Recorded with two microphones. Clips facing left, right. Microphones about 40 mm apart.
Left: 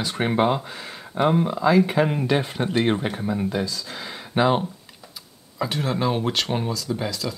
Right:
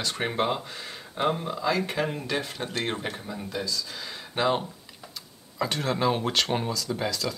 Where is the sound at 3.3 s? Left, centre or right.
Left; by 4.6 s centre.